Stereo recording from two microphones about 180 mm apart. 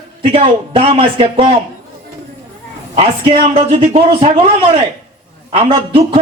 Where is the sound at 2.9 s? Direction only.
30° right (ahead or behind).